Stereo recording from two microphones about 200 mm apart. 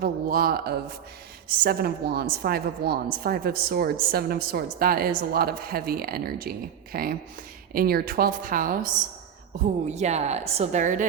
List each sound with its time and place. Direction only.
0.0 s a woman's voice: 45° right (ahead or behind)
9.9 s a woman's voice: 35° right (ahead or behind)